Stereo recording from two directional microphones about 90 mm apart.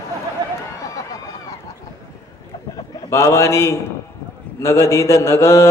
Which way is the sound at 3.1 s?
30° left (ahead or behind).